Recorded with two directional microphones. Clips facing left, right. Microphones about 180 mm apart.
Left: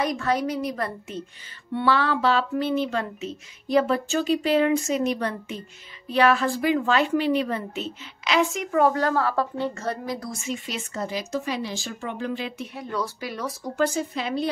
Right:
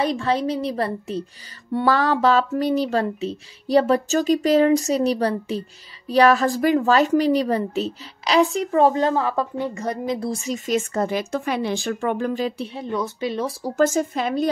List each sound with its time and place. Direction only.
0.0 s a woman's voice: 30° right (ahead or behind)
10.2 s speech: 35° right (ahead or behind)
12.7 s a woman's voice: 20° right (ahead or behind)
13.7 s speech: 45° right (ahead or behind)